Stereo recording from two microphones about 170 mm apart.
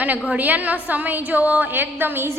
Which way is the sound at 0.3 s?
10° right (ahead or behind).